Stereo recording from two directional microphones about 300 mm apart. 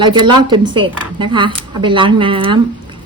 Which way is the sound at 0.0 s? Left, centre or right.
Centre.